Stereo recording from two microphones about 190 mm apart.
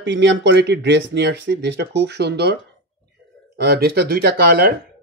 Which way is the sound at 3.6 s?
55° right (ahead or behind).